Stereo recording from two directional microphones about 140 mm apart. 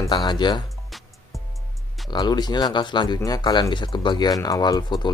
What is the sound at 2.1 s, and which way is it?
Speech, 30° left (ahead or behind).